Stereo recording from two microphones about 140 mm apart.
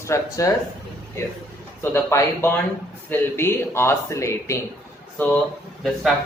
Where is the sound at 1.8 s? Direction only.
15° left (ahead or behind).